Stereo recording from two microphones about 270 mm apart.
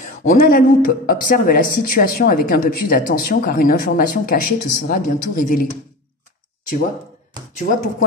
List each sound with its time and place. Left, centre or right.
0.2 s speech: left
7.5 s speech: left